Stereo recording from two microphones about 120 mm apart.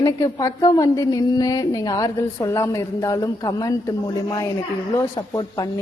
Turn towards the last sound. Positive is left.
turn(degrees=30)  # may be behind; listen again after turning